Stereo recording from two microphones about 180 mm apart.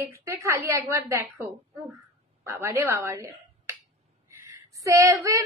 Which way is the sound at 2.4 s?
15° right (ahead or behind).